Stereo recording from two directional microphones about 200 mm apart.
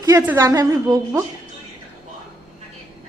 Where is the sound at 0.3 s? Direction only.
15° right (ahead or behind).